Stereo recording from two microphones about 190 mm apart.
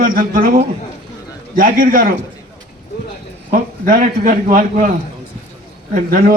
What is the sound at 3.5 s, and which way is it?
A man's voice, 45° right (ahead or behind).